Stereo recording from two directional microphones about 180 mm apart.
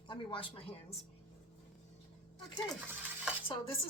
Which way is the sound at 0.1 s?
30° left (ahead or behind).